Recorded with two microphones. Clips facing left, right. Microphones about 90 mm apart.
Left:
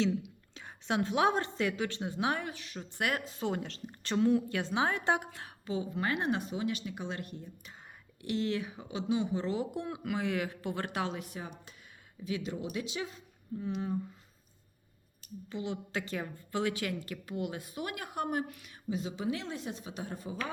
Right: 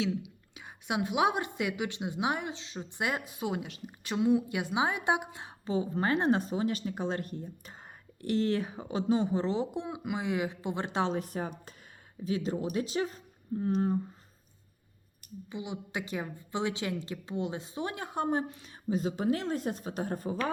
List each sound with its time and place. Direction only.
0.0 s a woman's voice: 10° right (ahead or behind)
5.6 s speech: 35° right (ahead or behind)
15.4 s a woman's voice: 15° right (ahead or behind); by 20.4 s 45° right (ahead or behind)